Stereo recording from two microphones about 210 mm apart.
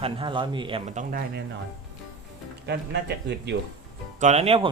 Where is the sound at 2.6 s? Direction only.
55° right (ahead or behind).